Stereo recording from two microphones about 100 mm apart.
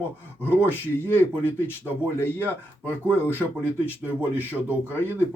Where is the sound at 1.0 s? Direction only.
20° left (ahead or behind).